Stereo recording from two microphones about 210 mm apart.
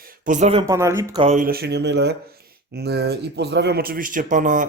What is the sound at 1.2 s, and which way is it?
Speech, 40° right (ahead or behind).